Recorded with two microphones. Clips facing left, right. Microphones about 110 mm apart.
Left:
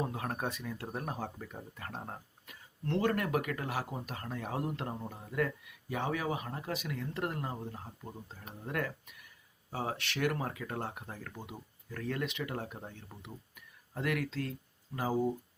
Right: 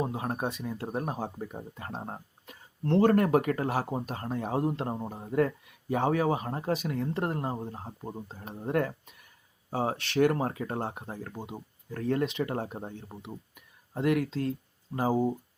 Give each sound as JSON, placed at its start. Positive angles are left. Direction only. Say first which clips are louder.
{"t": 0.0, "sound": "speech", "louder": "right 5 dB", "side_deg": -25}